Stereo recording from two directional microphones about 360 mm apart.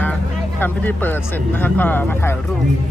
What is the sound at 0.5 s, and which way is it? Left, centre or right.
Speech, centre.